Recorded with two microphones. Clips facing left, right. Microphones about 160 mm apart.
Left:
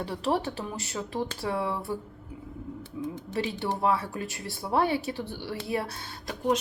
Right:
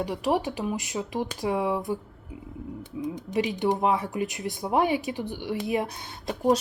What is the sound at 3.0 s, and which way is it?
Speech, 15° right (ahead or behind).